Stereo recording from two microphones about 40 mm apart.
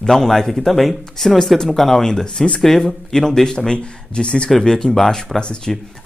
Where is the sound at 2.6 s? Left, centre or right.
Centre.